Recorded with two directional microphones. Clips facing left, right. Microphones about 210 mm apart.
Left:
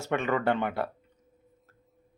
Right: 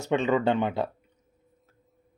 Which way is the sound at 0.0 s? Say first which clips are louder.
Right 4 dB; 15° right (ahead or behind).